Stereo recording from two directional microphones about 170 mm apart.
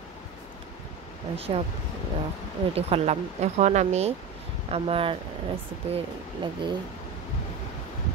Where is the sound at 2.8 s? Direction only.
40° right (ahead or behind).